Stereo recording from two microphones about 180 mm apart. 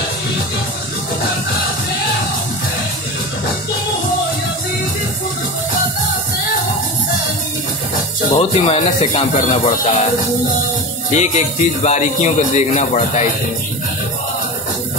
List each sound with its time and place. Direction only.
8.3 s a man's voice: 30° left (ahead or behind)
11.1 s a man's voice: 40° left (ahead or behind)